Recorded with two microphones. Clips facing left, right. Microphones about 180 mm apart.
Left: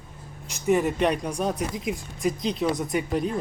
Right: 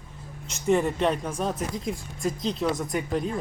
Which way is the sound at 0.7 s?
5° left (ahead or behind).